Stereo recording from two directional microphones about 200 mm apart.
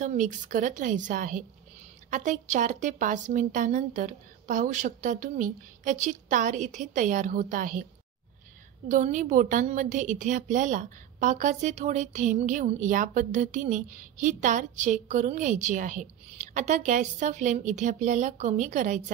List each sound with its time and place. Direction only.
0.0 s a woman's voice: 40° right (ahead or behind)
8.8 s a woman's voice: 40° right (ahead or behind)